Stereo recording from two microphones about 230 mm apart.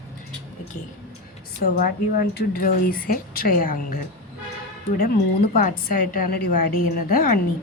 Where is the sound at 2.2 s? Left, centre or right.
Left.